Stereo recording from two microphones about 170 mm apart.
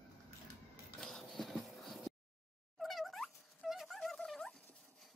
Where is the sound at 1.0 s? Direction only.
Centre (ahead or behind).